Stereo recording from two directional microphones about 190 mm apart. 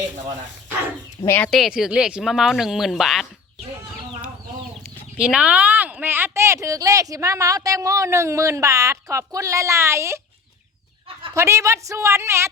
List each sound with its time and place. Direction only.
1.2 s speech: 10° left (ahead or behind)
1.5 s speech: centre (ahead or behind)
5.1 s speech: 5° right (ahead or behind)
11.3 s speech: 15° right (ahead or behind)